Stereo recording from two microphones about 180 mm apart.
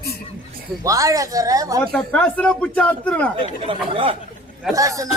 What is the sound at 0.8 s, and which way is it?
Speech, 20° right (ahead or behind).